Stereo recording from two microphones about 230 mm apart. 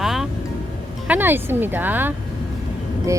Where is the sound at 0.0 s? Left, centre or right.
Centre.